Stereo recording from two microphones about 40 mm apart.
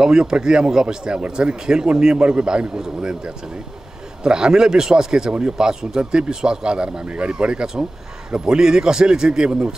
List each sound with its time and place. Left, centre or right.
0.0 s a man's voice: centre